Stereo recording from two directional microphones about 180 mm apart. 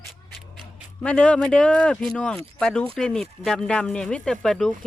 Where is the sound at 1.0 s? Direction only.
5° left (ahead or behind).